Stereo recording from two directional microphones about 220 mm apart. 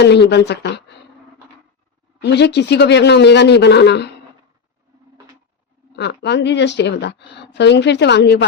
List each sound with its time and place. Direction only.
0.0 s a woman's voice: 50° left (ahead or behind)
2.2 s a woman's voice: 50° left (ahead or behind)
6.0 s a woman's voice: 50° left (ahead or behind)